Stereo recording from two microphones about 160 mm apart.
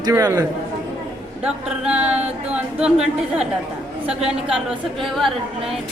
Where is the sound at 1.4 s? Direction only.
5° right (ahead or behind).